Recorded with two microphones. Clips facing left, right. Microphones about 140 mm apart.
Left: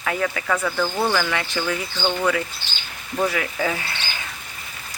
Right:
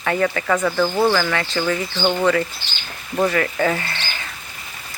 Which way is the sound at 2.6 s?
55° left (ahead or behind).